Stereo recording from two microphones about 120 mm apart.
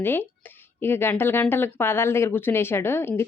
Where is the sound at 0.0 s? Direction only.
15° left (ahead or behind).